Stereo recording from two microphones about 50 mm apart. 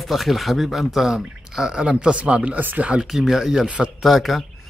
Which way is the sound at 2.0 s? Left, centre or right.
Right.